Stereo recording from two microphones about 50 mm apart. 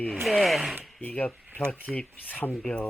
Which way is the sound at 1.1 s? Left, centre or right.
Left.